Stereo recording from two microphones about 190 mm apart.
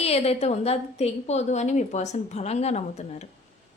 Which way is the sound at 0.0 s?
30° left (ahead or behind).